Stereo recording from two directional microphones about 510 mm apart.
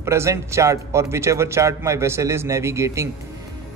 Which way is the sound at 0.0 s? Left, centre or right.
Centre.